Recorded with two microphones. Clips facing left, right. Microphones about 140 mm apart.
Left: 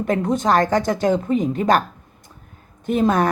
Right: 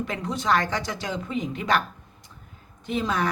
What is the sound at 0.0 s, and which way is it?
Speech, 50° left (ahead or behind).